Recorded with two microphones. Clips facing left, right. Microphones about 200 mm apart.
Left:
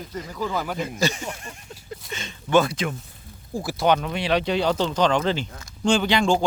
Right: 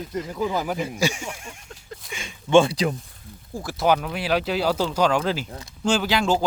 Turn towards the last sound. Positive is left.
turn(degrees=-5)  # may be behind; listen again after turning